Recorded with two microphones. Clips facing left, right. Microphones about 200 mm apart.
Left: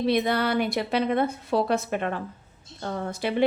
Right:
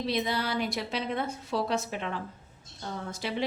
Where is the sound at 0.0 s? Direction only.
60° left (ahead or behind).